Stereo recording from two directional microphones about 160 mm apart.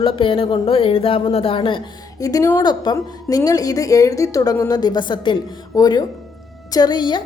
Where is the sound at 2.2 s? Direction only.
20° left (ahead or behind).